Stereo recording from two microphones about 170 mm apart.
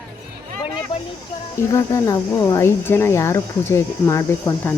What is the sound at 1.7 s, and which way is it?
Speech, 20° left (ahead or behind).